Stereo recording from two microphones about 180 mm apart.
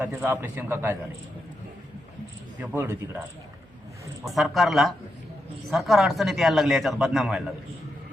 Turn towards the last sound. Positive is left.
turn(degrees=0)  # may be behind; listen again after turning